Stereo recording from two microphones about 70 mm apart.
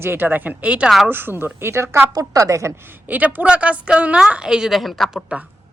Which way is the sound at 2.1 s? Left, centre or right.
Right.